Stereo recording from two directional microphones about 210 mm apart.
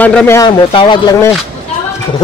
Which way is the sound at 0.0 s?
5° left (ahead or behind).